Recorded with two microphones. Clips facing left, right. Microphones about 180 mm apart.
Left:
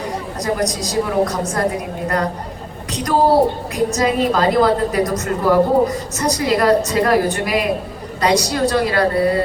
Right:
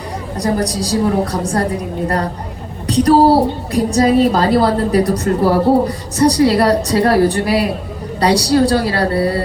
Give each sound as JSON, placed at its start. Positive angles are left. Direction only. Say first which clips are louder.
{"t": 0.3, "sound": "a woman's voice", "louder": "right 4 dB", "side_deg": -35}
{"t": 2.8, "sound": "a sound", "louder": "right 9 dB", "side_deg": -35}
{"t": 3.7, "sound": "a woman's voice", "louder": "right 5 dB", "side_deg": -35}